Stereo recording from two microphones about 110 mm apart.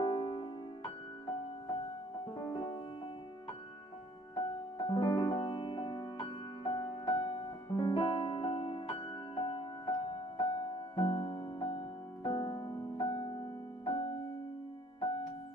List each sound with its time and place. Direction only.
0.0 s music: 50° left (ahead or behind)
2.3 s music: 45° left (ahead or behind)
4.8 s music: 45° left (ahead or behind)
6.6 s music: 45° left (ahead or behind)